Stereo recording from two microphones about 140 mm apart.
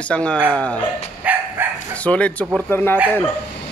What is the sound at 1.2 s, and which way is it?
Bow-wow, 10° right (ahead or behind).